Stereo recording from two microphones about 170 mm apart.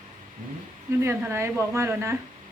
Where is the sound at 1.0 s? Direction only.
15° right (ahead or behind).